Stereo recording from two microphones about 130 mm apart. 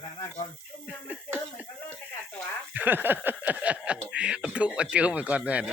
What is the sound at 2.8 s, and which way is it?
Speech, 15° right (ahead or behind).